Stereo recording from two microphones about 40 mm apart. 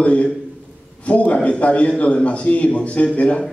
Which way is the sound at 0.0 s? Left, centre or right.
Left.